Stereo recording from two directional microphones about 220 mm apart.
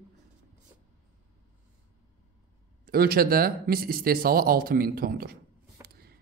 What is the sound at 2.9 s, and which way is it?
Speech, 45° right (ahead or behind).